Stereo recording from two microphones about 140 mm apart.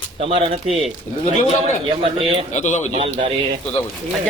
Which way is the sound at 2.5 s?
55° left (ahead or behind).